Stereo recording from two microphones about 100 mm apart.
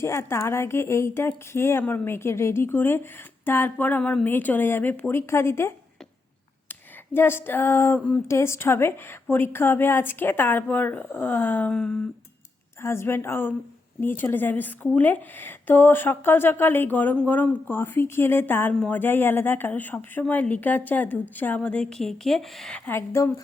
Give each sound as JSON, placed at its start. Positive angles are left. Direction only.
{"t": 0.0, "sound": "a woman's voice", "side_deg": 25}
{"t": 6.7, "sound": "a sound", "side_deg": 20}
{"t": 7.9, "sound": "speech", "side_deg": 15}
{"t": 8.3, "sound": "a woman's voice", "side_deg": 25}
{"t": 12.8, "sound": "a woman's voice", "side_deg": 25}
{"t": 22.9, "sound": "a woman's voice", "side_deg": 25}